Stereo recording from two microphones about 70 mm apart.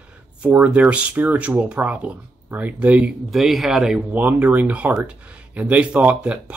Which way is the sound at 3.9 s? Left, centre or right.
Right.